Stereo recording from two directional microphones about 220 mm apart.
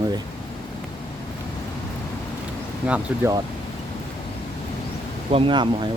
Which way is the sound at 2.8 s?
10° right (ahead or behind).